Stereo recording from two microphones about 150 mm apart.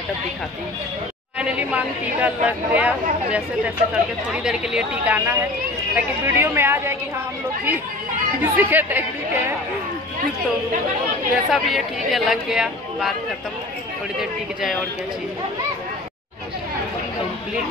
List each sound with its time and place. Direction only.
1.4 s speech: 10° right (ahead or behind)
8.4 s speech: 10° right (ahead or behind)
11.5 s speech: centre (ahead or behind)